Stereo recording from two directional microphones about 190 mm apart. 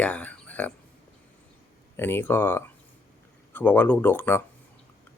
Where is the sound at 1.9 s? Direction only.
10° left (ahead or behind).